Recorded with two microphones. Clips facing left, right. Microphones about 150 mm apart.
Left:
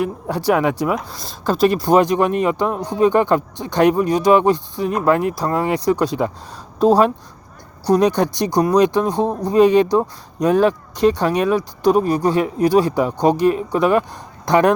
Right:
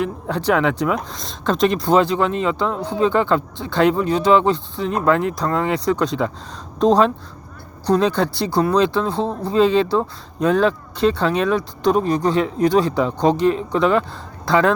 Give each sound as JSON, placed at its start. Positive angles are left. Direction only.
{"t": 0.0, "sound": "speech", "side_deg": 10}